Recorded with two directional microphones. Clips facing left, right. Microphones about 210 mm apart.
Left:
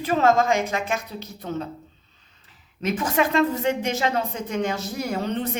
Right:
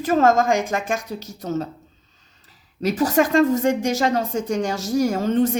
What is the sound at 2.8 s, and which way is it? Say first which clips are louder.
A woman's voice: right 4 dB; 40° right (ahead or behind).